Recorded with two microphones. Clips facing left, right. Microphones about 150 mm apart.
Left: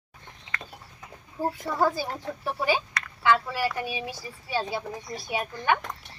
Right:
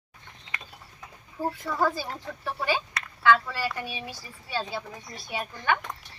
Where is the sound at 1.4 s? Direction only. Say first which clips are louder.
Left 2 dB; 15° left (ahead or behind).